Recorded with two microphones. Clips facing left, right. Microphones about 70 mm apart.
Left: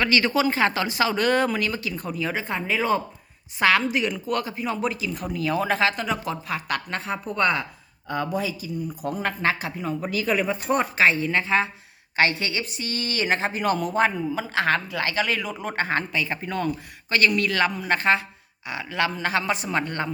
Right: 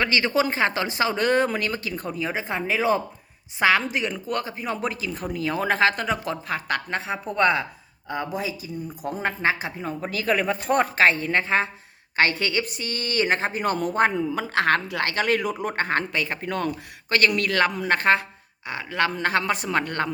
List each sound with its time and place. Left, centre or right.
0.0 s speech: right
2.2 s speech: centre
8.0 s speech: centre
9.8 s a woman's voice: right
14.1 s a woman's voice: right